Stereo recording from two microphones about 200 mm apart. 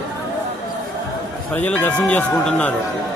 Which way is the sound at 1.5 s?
10° left (ahead or behind).